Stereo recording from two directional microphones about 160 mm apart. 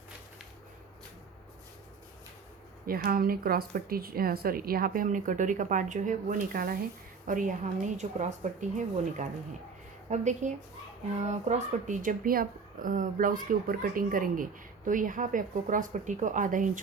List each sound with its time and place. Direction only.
2.8 s speech: 70° right (ahead or behind)
7.3 s a woman's voice: 55° right (ahead or behind)
10.1 s a woman's voice: 45° right (ahead or behind)